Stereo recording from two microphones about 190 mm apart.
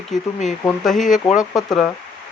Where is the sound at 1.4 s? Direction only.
20° left (ahead or behind).